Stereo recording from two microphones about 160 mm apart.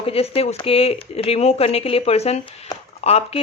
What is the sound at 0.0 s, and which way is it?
Speech, 35° left (ahead or behind).